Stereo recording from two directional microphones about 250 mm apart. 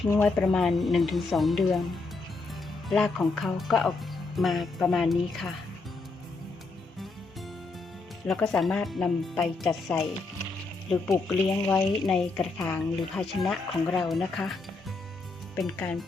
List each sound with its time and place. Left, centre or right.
0.1 s speech: centre
2.9 s speech: centre
8.3 s speech: centre
11.1 s speech: centre